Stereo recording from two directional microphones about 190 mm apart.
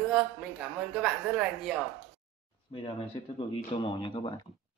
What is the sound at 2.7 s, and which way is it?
Speech, 25° left (ahead or behind).